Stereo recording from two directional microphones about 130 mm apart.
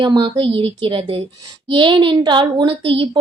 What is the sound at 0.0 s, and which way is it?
A woman's voice, 40° right (ahead or behind).